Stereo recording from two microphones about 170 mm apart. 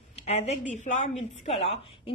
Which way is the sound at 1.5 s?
35° left (ahead or behind).